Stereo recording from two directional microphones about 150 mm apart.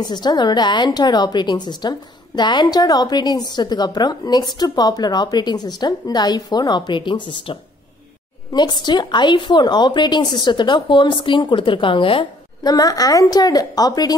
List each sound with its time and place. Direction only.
0.0 s a woman's voice: 30° left (ahead or behind)
12.7 s a woman's voice: 25° left (ahead or behind)